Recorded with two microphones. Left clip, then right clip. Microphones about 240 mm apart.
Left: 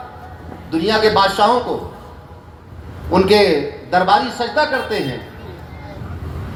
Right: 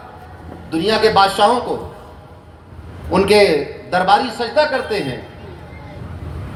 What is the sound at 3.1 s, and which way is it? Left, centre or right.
A man's voice, right.